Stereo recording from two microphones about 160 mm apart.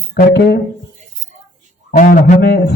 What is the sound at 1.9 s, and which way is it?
Speech, 60° left (ahead or behind).